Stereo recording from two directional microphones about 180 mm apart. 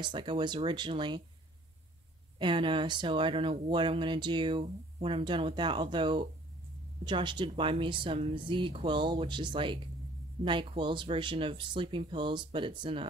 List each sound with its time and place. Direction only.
0.0 s speech: 25° right (ahead or behind)
2.3 s speech: 25° right (ahead or behind)